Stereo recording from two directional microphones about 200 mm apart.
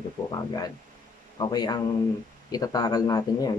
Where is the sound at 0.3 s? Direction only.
20° left (ahead or behind).